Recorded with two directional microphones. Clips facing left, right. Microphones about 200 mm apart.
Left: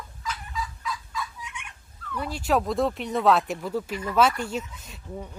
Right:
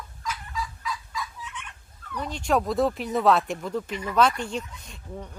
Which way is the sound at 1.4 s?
10° left (ahead or behind).